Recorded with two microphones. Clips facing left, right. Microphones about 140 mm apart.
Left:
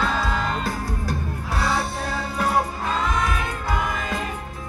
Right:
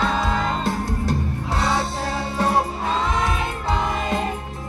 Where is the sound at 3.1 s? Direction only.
25° right (ahead or behind).